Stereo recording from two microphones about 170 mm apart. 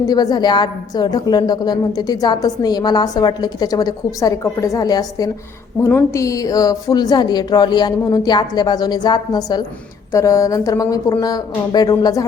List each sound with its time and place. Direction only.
0.1 s a woman's voice: 25° left (ahead or behind)